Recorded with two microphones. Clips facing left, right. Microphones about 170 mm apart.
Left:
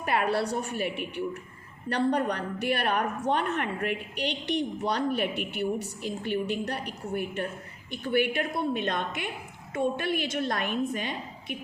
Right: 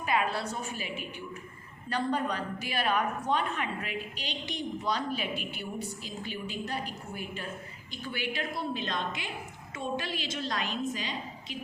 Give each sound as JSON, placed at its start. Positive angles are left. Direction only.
{"t": 0.0, "sound": "a woman's voice", "side_deg": 60}